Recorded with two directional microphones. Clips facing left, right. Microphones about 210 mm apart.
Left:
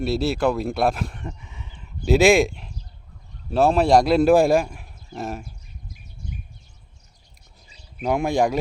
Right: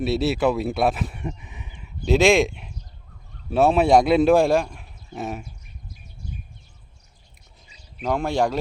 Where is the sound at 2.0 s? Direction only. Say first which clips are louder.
Left 1 dB; 5° left (ahead or behind).